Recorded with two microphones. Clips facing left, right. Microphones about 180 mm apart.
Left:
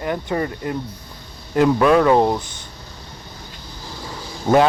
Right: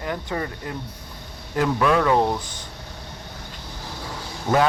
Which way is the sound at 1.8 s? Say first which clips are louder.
Left 4 dB; 35° left (ahead or behind).